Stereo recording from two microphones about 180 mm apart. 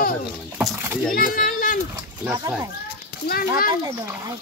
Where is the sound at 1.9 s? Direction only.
15° right (ahead or behind).